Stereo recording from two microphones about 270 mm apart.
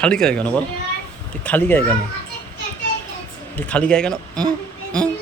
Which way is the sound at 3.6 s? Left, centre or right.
Centre.